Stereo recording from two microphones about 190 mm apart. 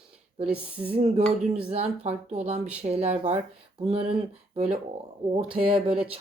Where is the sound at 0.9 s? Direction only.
30° right (ahead or behind).